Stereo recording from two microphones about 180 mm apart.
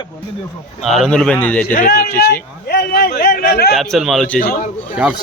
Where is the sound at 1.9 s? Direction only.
60° left (ahead or behind).